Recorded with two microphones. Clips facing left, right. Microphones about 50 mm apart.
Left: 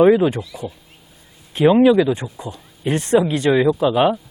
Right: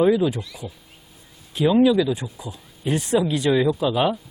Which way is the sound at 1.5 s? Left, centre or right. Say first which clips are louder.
Left 4 dB; left.